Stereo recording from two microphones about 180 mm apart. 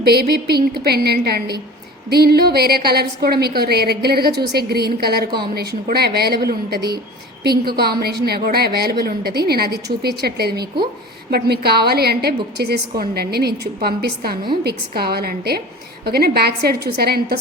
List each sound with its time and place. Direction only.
0.0 s a woman's voice: 60° right (ahead or behind)